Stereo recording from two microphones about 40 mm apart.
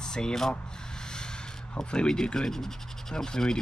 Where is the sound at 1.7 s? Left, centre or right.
Left.